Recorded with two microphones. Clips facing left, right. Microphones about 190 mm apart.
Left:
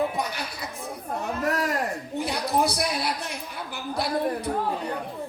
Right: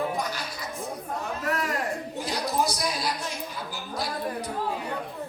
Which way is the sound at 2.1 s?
60° left (ahead or behind).